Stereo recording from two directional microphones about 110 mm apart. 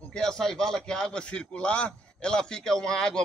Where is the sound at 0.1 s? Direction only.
5° left (ahead or behind).